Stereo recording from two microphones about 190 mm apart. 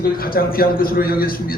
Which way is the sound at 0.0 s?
50° left (ahead or behind).